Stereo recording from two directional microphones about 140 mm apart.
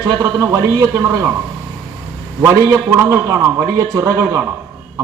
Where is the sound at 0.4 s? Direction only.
20° right (ahead or behind).